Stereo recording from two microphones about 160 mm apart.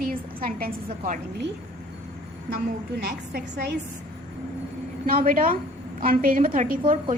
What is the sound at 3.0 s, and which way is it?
Speech, 90° right.